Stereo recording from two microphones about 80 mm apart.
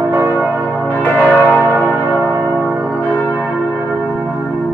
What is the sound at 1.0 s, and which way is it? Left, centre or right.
Church bell, centre.